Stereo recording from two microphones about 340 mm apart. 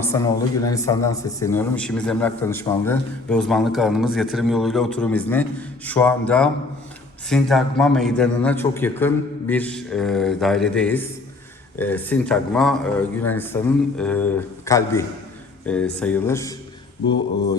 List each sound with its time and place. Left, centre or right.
0.0 s a man's voice: centre